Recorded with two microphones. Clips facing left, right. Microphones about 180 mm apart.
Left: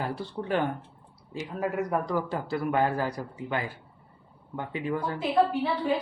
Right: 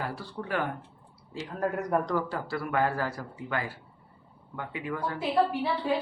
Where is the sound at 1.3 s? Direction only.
10° left (ahead or behind).